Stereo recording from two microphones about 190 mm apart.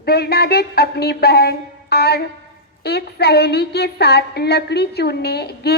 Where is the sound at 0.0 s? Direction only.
55° left (ahead or behind).